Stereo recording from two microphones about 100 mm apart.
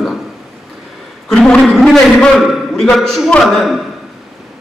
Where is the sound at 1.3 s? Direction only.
5° left (ahead or behind).